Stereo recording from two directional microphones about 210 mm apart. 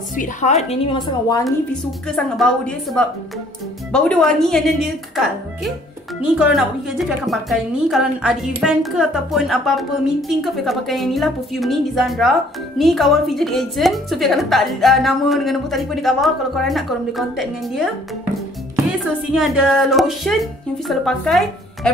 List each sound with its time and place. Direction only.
0.1 s a woman's voice: 35° left (ahead or behind); by 1.4 s 20° left (ahead or behind)
1.4 s a woman's voice: centre (ahead or behind)
19.3 s a woman's voice: 5° right (ahead or behind)